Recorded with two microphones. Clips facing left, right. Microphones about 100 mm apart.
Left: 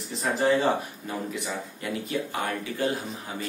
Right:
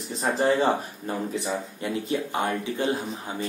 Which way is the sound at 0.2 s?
35° right (ahead or behind).